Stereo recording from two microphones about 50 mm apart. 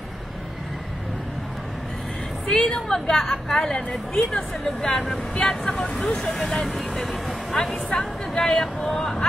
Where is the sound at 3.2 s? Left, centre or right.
Centre.